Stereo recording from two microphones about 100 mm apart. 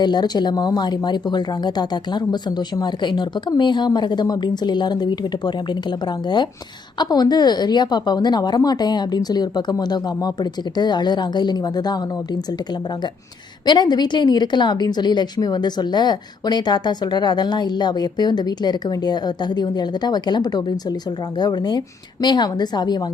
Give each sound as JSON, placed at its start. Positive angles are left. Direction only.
{"t": 0.0, "sound": "a woman's voice", "side_deg": 45}
{"t": 13.7, "sound": "a woman's voice", "side_deg": 45}